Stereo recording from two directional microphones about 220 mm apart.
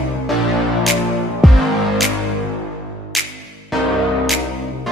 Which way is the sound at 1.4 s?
Centre (ahead or behind).